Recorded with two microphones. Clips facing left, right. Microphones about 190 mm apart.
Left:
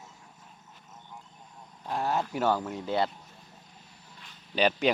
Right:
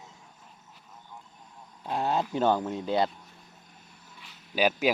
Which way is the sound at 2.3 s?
20° right (ahead or behind).